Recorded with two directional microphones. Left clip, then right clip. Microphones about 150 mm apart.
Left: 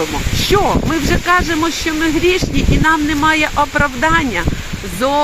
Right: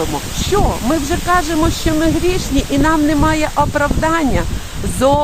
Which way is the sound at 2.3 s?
15° right (ahead or behind).